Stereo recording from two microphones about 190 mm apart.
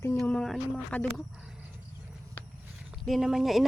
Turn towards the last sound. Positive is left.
turn(degrees=0)  # may be behind; listen again after turning